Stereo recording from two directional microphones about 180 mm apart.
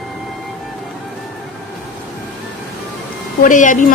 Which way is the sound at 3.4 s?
45° left (ahead or behind).